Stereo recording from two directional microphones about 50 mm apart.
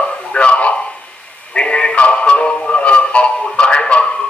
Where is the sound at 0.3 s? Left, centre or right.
Left.